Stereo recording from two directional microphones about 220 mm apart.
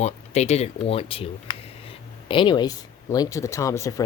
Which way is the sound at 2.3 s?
20° left (ahead or behind).